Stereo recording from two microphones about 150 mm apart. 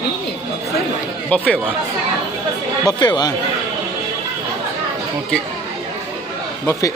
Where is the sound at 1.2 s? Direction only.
10° left (ahead or behind).